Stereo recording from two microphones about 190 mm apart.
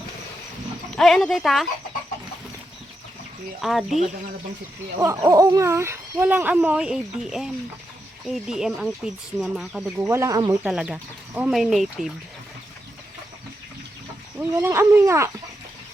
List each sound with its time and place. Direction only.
0.9 s speech: centre (ahead or behind)
3.6 s speech: centre (ahead or behind)
4.9 s speech: 15° right (ahead or behind)
10.1 s speech: 15° right (ahead or behind)
10.6 s speech: 5° right (ahead or behind)
14.3 s speech: 10° right (ahead or behind)